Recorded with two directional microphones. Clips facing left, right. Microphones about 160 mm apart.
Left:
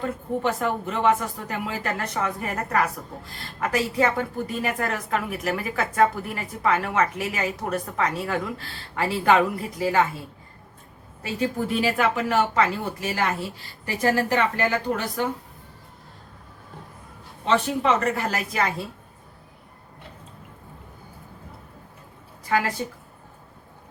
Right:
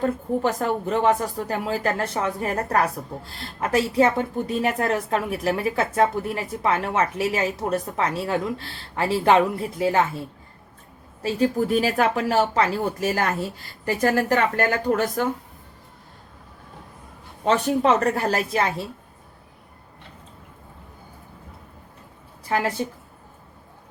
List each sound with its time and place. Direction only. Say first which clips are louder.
0.0 s speech: right 3 dB; 40° right (ahead or behind)
3.6 s a woman's voice: right 3 dB; 30° right (ahead or behind)
11.2 s a woman's voice: right 5 dB; 40° right (ahead or behind)
17.4 s speech: right 3 dB; 40° right (ahead or behind)
22.4 s speech: even; 30° right (ahead or behind)